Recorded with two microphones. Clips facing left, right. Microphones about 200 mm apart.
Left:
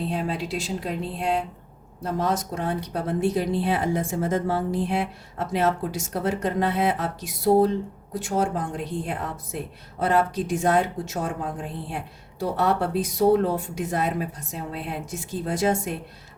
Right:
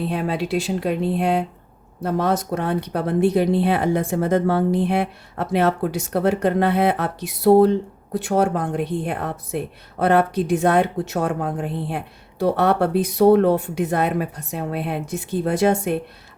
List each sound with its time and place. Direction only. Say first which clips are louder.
0.0 s speech: right 4 dB; 65° right (ahead or behind)